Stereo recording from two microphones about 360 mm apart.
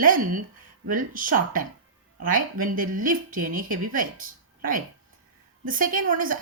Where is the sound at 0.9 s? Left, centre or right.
Right.